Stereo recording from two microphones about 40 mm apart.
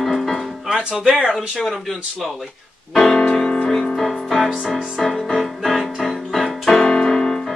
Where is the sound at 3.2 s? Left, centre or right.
Left.